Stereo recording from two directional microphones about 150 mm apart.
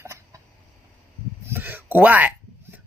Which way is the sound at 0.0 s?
20° right (ahead or behind).